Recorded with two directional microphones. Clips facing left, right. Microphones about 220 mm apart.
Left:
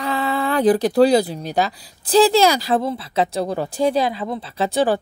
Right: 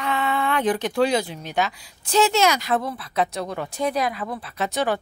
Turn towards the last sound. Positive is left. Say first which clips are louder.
# left 5 dB
turn(degrees=30)  # may be behind; listen again after turning